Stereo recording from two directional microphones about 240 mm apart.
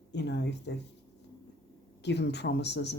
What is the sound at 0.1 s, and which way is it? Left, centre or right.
Speech, left.